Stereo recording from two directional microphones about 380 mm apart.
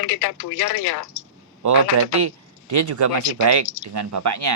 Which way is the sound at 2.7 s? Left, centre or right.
Right.